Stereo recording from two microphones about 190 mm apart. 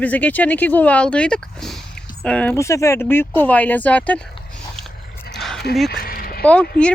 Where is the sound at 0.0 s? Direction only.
10° left (ahead or behind).